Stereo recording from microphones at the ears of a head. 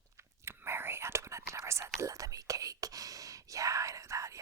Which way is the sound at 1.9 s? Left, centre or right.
Right.